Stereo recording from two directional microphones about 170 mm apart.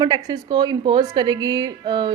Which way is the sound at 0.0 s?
25° right (ahead or behind).